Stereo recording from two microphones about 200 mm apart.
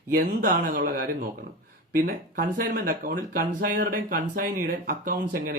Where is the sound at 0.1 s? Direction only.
45° right (ahead or behind).